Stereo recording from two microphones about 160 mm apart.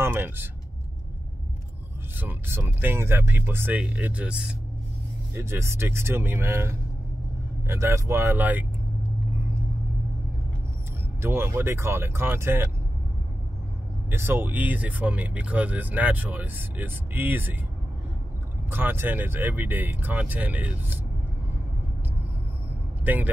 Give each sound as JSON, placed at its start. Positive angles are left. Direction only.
{"t": 0.0, "sound": "speech", "side_deg": -15}
{"t": 2.1, "sound": "speech", "side_deg": -15}
{"t": 11.1, "sound": "speech", "side_deg": -15}
{"t": 14.1, "sound": "speech", "side_deg": -15}
{"t": 18.7, "sound": "speech", "side_deg": -15}
{"t": 23.0, "sound": "speech", "side_deg": -10}